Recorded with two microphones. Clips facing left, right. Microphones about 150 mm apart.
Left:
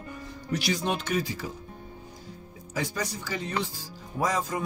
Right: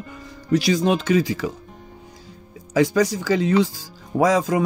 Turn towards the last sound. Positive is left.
turn(degrees=-90)